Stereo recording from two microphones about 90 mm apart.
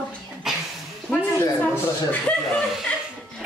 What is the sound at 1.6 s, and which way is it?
Speech, 20° left (ahead or behind).